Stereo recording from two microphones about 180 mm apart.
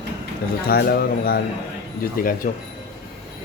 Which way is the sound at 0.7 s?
60° left (ahead or behind).